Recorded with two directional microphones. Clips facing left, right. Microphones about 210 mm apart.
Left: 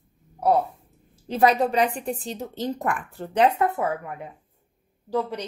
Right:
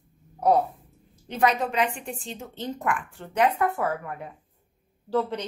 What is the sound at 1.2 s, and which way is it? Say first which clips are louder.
A woman's voice: left 4 dB; 35° left (ahead or behind).